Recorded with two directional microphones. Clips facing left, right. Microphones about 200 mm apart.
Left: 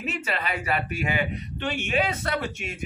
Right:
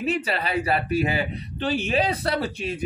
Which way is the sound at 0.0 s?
35° right (ahead or behind).